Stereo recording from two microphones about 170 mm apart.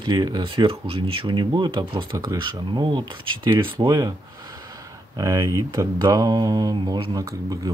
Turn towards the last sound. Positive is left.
turn(degrees=-20)  # may be behind; listen again after turning